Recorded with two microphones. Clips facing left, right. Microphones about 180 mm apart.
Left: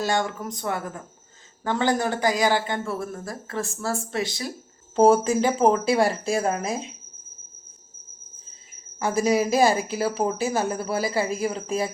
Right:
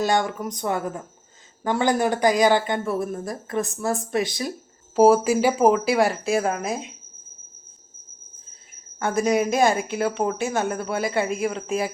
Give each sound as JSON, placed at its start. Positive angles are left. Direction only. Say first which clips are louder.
{"t": 0.0, "sound": "speech", "louder": "right 3 dB", "side_deg": -20}
{"t": 4.9, "sound": "speech", "louder": "right 1 dB", "side_deg": -5}
{"t": 9.0, "sound": "speech", "louder": "even", "side_deg": 0}